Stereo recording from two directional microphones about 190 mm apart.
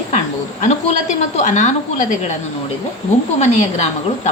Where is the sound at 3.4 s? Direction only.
35° left (ahead or behind).